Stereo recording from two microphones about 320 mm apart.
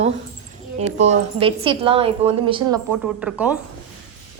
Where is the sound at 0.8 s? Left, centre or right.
Right.